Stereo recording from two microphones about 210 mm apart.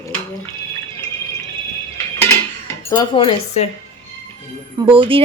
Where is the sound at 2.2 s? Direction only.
15° left (ahead or behind).